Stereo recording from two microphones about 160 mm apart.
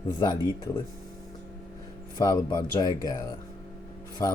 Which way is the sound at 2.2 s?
25° left (ahead or behind).